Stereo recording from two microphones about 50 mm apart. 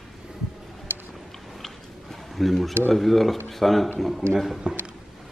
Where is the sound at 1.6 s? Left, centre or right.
Centre.